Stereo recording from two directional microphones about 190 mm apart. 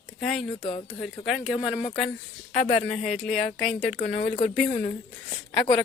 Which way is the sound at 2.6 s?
35° left (ahead or behind).